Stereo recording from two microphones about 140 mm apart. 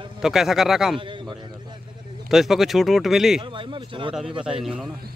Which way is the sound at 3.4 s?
35° right (ahead or behind).